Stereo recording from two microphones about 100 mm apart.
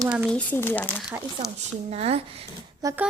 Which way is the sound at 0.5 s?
20° left (ahead or behind).